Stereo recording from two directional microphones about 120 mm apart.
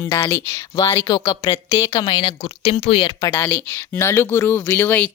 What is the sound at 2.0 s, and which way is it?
Speech, 45° left (ahead or behind).